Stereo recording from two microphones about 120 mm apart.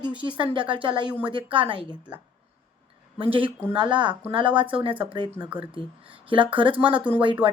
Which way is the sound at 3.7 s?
40° right (ahead or behind).